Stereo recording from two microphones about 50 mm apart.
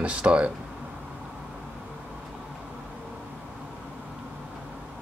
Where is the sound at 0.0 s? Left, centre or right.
Right.